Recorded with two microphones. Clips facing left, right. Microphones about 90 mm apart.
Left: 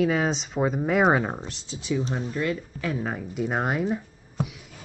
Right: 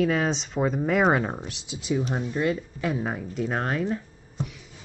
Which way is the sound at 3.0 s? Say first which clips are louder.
Even; 5° right (ahead or behind).